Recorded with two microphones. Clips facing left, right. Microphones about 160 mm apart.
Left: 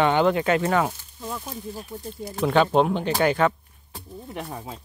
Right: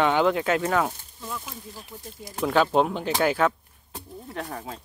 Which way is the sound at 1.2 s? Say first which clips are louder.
Left 3 dB; 35° left (ahead or behind).